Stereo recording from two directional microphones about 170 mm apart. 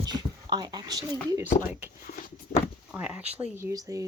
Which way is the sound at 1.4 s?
10° right (ahead or behind).